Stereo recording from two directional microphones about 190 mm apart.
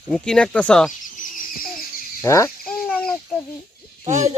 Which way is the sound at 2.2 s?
15° left (ahead or behind).